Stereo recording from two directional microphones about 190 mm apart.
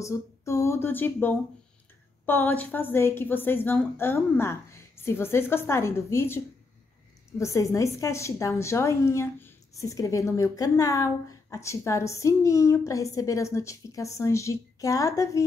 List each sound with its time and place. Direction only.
0.0 s a woman's voice: 15° left (ahead or behind)